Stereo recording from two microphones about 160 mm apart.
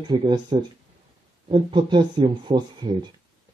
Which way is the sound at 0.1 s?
25° right (ahead or behind).